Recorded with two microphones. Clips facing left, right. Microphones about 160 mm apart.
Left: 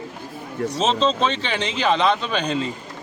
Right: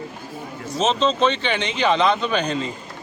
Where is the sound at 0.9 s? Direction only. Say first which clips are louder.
Right 1 dB; centre (ahead or behind).